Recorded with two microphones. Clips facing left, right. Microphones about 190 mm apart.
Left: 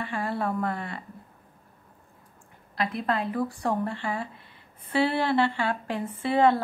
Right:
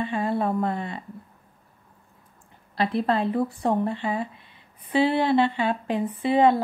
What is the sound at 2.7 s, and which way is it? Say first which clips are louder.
Speech: right 5 dB; 30° right (ahead or behind).